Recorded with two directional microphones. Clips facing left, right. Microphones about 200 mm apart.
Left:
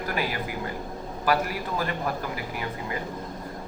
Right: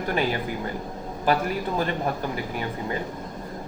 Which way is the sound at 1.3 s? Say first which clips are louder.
Right 1 dB; 25° right (ahead or behind).